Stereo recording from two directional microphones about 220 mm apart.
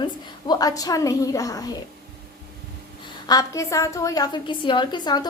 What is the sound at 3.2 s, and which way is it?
A woman's voice, 15° left (ahead or behind).